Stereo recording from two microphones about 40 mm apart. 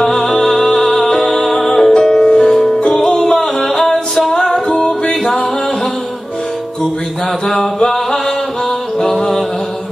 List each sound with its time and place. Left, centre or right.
0.0 s music: centre
7.4 s mantra: centre
9.0 s music: centre